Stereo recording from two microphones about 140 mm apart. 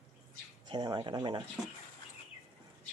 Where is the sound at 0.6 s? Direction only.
35° right (ahead or behind).